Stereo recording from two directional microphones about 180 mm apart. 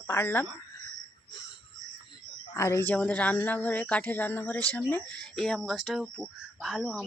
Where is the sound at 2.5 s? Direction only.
15° left (ahead or behind).